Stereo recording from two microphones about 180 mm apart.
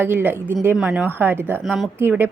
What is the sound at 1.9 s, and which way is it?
Speech, 10° right (ahead or behind).